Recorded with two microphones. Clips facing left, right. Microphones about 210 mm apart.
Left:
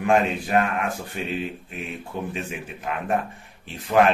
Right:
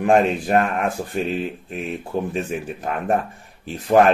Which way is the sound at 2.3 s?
40° right (ahead or behind).